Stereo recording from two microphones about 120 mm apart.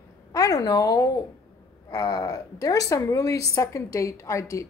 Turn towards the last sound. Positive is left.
turn(degrees=25)  # may be behind; listen again after turning